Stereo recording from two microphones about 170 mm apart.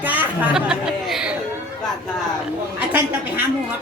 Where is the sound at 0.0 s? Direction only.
10° right (ahead or behind).